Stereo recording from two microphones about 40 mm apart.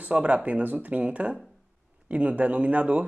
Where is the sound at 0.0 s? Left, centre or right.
Right.